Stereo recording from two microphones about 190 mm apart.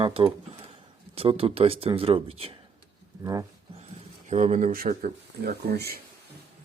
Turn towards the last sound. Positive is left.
turn(degrees=-55)  # may be behind; listen again after turning